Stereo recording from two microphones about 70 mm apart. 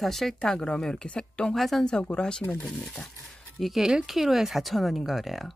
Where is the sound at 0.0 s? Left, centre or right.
Centre.